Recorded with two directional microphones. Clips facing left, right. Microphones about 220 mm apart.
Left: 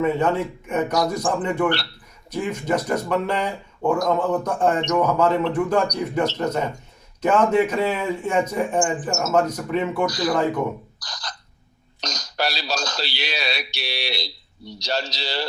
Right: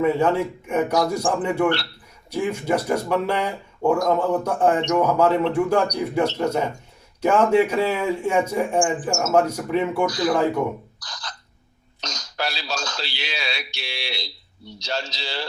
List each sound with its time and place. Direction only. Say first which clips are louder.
0.0 s speech: right 1 dB; 10° right (ahead or behind)
11.0 s a sound: left 1 dB; 40° left (ahead or behind)
11.9 s a man's voice: left 3 dB; 35° left (ahead or behind)